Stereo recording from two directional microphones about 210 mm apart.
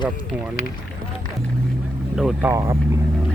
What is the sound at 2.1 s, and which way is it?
Speech, 5° right (ahead or behind).